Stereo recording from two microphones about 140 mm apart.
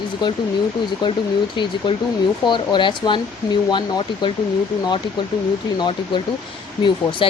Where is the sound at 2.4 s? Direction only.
35° left (ahead or behind).